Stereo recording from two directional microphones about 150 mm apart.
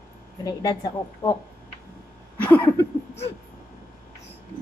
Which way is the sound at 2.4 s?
15° left (ahead or behind).